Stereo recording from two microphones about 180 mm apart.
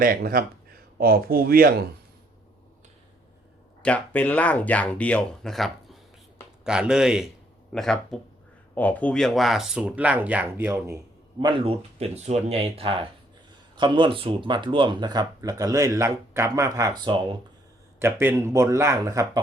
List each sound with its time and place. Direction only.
0.0 s speech: 55° right (ahead or behind)
3.8 s speech: 10° left (ahead or behind); by 10.9 s 10° right (ahead or behind)
11.3 s speech: 25° right (ahead or behind)
18.0 s speech: 15° right (ahead or behind)